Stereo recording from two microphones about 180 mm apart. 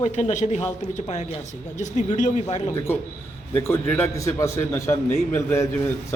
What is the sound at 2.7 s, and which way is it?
A man's voice, 15° left (ahead or behind).